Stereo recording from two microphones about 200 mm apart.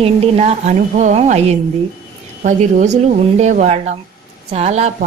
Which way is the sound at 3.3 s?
35° right (ahead or behind).